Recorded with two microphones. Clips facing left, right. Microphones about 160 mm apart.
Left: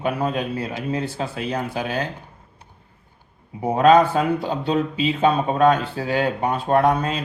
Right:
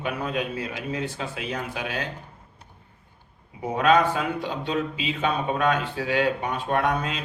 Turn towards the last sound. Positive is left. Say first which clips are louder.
# left 6 dB
turn(degrees=40)  # may be behind; listen again after turning